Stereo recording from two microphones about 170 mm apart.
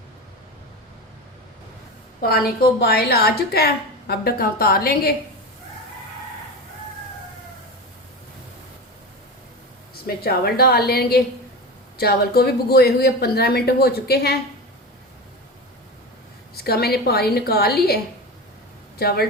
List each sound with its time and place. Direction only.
2.2 s a woman's voice: 65° left (ahead or behind)
10.1 s a woman's voice: 65° left (ahead or behind)
16.6 s a woman's voice: 65° left (ahead or behind)